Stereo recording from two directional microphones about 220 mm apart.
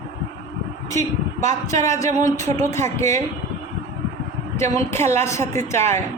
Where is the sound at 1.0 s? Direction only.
30° right (ahead or behind).